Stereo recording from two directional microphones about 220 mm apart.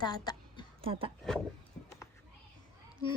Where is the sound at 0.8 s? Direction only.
25° right (ahead or behind).